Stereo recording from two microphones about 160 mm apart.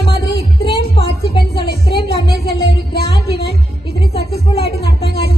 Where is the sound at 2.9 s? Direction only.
85° left.